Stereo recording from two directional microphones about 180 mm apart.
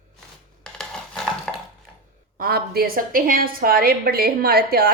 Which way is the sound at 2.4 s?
60° right (ahead or behind).